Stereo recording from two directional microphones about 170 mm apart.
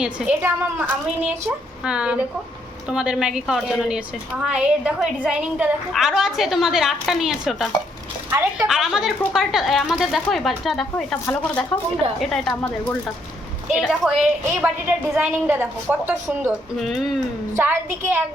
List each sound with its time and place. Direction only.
0.0 s a woman's voice: 5° right (ahead or behind)
14.8 s a woman's voice: 15° right (ahead or behind)
16.8 s a woman's voice: centre (ahead or behind)
17.5 s a woman's voice: 15° right (ahead or behind)